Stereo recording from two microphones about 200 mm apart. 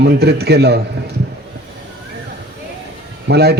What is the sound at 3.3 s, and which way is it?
Speech, 55° right (ahead or behind).